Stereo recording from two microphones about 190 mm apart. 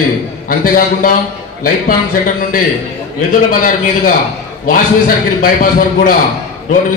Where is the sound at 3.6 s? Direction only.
45° left (ahead or behind).